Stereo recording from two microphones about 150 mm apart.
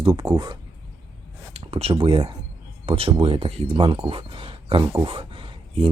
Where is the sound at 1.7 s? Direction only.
40° right (ahead or behind).